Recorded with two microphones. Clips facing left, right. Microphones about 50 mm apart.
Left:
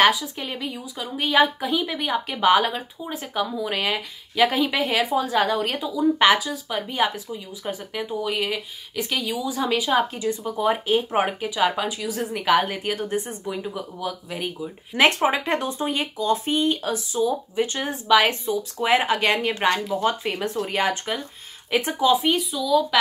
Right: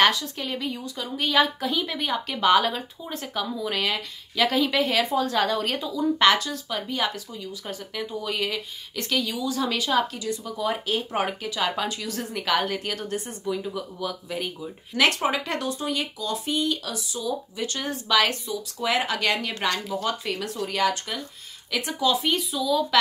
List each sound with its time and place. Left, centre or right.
0.0 s a woman's voice: centre
15.0 s speech: left
22.1 s a woman's voice: centre
22.5 s speech: centre